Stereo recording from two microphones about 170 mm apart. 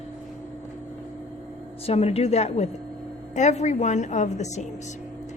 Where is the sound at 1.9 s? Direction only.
35° left (ahead or behind).